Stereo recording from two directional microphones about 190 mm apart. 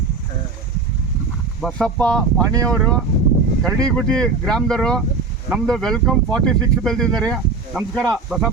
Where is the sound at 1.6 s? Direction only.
5° left (ahead or behind).